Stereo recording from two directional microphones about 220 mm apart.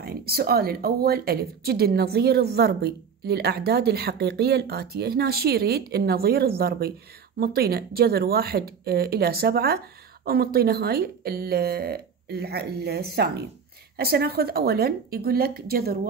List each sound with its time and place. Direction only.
0.0 s speech: 45° right (ahead or behind)